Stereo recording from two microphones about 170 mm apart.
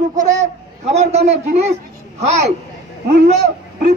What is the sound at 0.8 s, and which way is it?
A man's voice, 40° right (ahead or behind).